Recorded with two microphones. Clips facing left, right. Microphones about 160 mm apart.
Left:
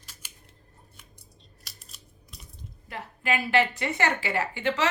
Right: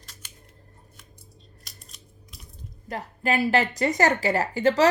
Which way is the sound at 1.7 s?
Centre (ahead or behind).